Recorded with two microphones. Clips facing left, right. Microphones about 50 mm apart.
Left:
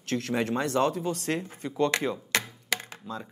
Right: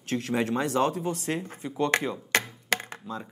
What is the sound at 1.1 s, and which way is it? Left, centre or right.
Speech, left.